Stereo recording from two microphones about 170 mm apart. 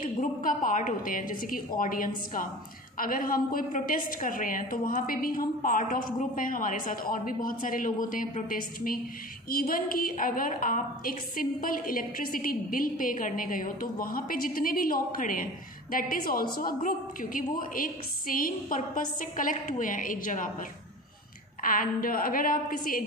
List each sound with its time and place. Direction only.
0.0 s a woman's voice: 55° left (ahead or behind)
21.6 s a woman's voice: 55° left (ahead or behind)